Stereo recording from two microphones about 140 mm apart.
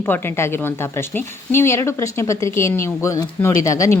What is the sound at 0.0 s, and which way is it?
A woman's voice, 15° left (ahead or behind).